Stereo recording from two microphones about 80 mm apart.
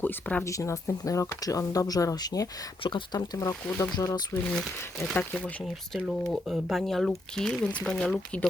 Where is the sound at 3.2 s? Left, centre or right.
Left.